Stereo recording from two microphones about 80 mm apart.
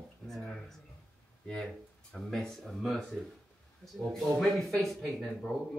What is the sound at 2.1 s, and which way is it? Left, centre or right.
Speech, centre.